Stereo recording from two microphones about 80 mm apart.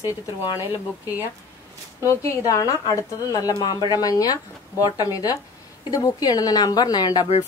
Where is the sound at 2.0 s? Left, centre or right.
Left.